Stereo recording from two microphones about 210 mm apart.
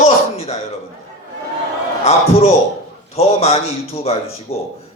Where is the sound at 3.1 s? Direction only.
30° left (ahead or behind).